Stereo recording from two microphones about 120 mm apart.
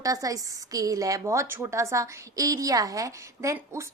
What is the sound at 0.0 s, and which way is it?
A woman's voice, 30° right (ahead or behind).